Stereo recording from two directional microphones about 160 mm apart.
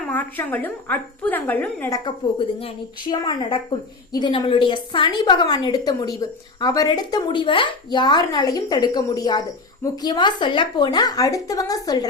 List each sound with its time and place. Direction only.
0.1 s a woman's voice: 10° left (ahead or behind)
1.9 s a woman's voice: 30° left (ahead or behind)